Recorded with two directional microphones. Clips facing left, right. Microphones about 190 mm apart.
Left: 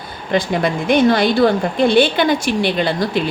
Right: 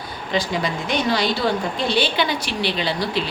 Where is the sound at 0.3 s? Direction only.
55° left (ahead or behind).